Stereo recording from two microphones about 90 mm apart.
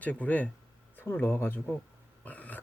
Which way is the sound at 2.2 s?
15° left (ahead or behind).